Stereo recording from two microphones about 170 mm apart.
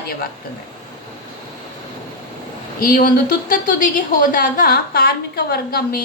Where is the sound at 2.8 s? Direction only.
55° left (ahead or behind).